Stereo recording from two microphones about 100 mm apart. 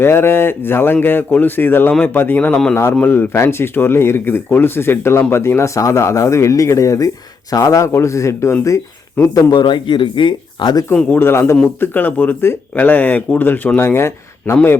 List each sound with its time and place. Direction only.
0.0 s speech: 25° left (ahead or behind)
9.6 s speech: 50° left (ahead or behind)
11.2 s speech: 25° left (ahead or behind)